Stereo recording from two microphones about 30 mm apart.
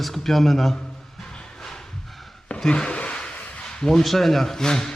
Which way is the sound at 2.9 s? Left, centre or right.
Left.